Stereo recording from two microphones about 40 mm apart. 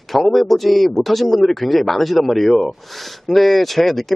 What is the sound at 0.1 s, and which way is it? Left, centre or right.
A man's voice, centre.